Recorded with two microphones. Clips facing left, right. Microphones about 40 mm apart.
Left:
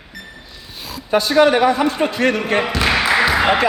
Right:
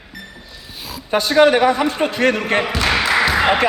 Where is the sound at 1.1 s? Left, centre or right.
Right.